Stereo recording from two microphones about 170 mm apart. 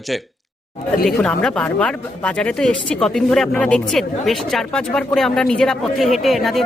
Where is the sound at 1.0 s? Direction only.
5° left (ahead or behind).